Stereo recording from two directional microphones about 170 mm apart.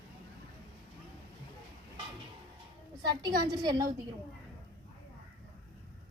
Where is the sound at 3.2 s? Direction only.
25° right (ahead or behind).